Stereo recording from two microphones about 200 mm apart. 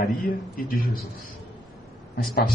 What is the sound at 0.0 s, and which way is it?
Speech, 45° left (ahead or behind).